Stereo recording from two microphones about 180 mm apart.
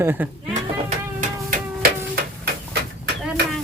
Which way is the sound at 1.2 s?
50° right (ahead or behind).